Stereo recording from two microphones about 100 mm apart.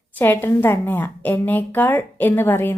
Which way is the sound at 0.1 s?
20° left (ahead or behind).